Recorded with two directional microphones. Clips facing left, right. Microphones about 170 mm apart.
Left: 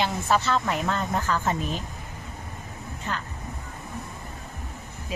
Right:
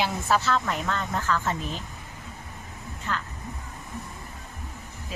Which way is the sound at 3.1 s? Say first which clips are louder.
Right 1 dB; 15° left (ahead or behind).